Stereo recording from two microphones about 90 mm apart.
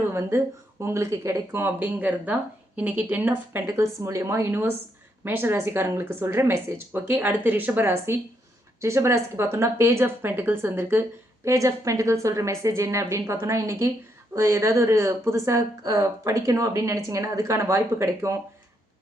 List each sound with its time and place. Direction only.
0.1 s speech: 30° right (ahead or behind)
3.7 s a woman's voice: 30° right (ahead or behind)
15.8 s a woman's voice: 40° right (ahead or behind)